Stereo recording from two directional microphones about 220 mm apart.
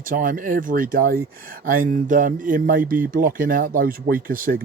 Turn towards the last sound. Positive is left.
turn(degrees=-40)  # may be behind; listen again after turning